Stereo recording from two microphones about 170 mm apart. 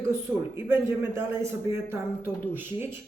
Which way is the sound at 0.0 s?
15° right (ahead or behind).